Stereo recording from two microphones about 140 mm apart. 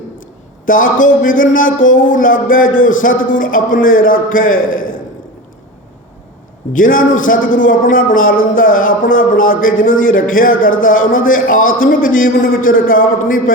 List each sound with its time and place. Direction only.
0.6 s a man's voice: 75° left (ahead or behind)
6.7 s a man's voice: 75° left (ahead or behind)